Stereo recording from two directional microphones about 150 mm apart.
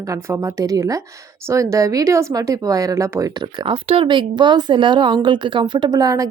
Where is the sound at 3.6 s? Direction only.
35° right (ahead or behind).